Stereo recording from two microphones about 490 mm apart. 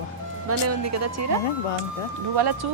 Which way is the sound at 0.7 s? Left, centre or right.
Right.